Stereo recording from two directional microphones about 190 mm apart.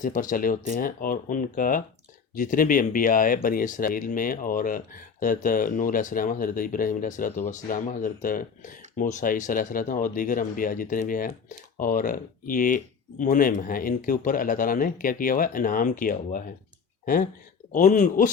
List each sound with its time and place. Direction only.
0.0 s speech: 45° left (ahead or behind)
17.7 s speech: 40° left (ahead or behind)